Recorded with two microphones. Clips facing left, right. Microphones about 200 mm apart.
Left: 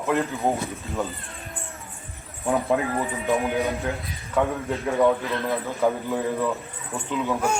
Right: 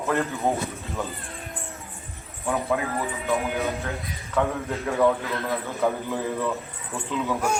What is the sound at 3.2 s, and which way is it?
Speech, 15° left (ahead or behind).